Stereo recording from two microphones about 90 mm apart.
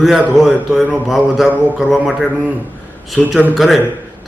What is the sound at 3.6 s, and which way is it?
Speech, centre (ahead or behind).